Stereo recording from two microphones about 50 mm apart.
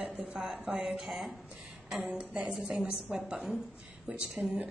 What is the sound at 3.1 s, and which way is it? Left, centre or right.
Speech, centre.